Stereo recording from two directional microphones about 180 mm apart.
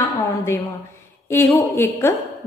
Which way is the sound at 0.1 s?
15° left (ahead or behind).